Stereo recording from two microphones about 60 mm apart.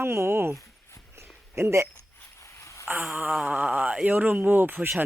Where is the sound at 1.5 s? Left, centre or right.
Right.